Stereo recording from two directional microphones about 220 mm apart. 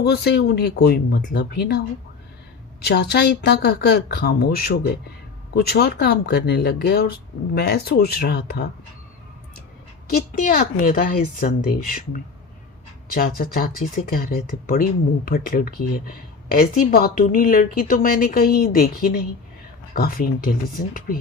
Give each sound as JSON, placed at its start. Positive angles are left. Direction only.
{"t": 0.0, "sound": "speech", "side_deg": 45}
{"t": 2.8, "sound": "speech", "side_deg": 50}
{"t": 10.1, "sound": "speech", "side_deg": 40}